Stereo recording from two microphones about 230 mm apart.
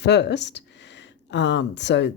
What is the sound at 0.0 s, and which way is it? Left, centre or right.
Speech, left.